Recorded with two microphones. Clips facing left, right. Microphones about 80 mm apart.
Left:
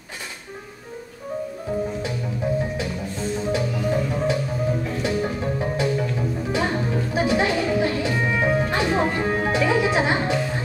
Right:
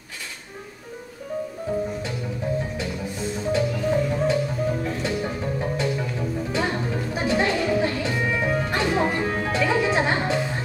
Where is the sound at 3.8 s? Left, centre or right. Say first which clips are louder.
Even; centre.